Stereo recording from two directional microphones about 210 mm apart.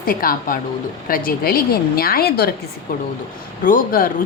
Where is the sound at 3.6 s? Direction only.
40° left (ahead or behind).